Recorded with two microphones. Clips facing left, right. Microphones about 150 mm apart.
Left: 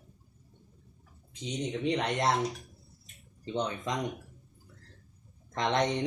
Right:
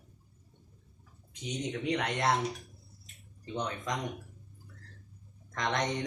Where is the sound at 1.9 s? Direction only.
25° left (ahead or behind).